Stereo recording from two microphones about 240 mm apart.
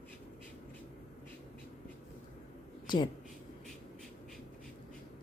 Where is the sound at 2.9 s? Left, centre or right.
Centre.